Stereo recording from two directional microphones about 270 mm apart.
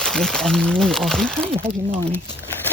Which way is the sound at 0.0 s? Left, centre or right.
Centre.